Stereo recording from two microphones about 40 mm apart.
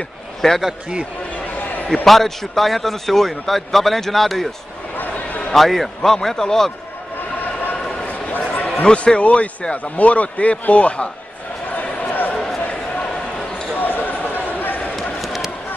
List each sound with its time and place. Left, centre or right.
0.4 s a man's voice: centre
2.0 s a man's voice: centre
4.9 s a sound: left
5.5 s a man's voice: centre
6.1 s a man's voice: centre
7.7 s bow-wow: left
8.3 s basketball bounce: left
8.8 s a man's voice: left
11.7 s basketball bounce: left
12.4 s a sound: centre
13.7 s basketball bounce: left
15.2 s basketball bounce: centre